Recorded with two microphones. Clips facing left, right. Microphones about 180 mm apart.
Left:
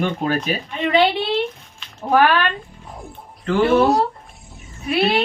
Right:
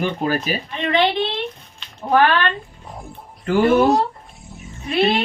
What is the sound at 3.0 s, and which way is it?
Music, 5° right (ahead or behind).